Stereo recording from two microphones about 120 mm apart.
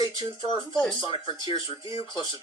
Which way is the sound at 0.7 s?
5° left (ahead or behind).